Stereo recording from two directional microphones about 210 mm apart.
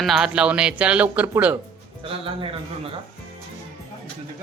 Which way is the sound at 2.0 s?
25° right (ahead or behind).